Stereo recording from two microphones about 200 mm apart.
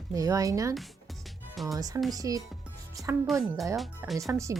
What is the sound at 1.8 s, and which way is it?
Speech, 20° right (ahead or behind).